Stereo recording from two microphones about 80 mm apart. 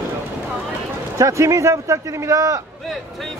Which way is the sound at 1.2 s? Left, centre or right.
Right.